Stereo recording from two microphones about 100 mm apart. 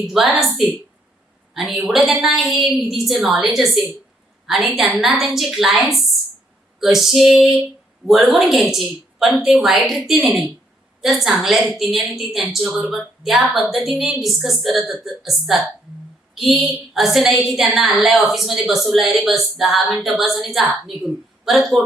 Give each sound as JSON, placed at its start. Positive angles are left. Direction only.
{"t": 0.0, "sound": "a woman's voice", "side_deg": -5}